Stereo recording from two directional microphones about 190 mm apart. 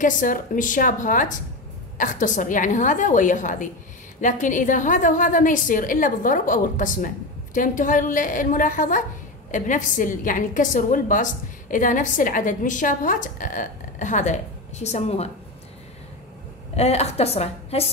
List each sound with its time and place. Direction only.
0.0 s a woman's voice: 45° left (ahead or behind)
16.7 s a woman's voice: 35° left (ahead or behind)